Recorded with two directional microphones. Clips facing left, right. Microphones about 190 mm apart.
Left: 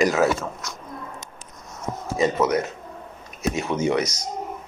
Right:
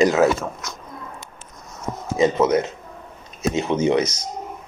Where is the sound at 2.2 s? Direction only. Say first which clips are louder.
Right 3 dB; 20° right (ahead or behind).